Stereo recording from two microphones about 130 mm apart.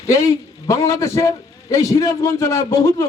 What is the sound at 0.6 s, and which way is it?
A man's voice, 25° left (ahead or behind).